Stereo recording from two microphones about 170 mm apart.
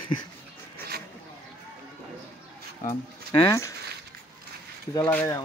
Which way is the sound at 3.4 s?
15° left (ahead or behind).